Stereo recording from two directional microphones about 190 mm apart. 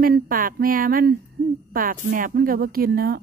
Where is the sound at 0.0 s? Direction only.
50° right (ahead or behind).